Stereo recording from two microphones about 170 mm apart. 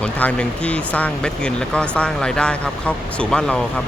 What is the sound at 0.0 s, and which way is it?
Speech, 5° left (ahead or behind).